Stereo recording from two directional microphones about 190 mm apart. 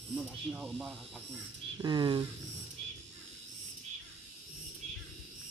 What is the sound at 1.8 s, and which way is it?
Speech, 25° right (ahead or behind).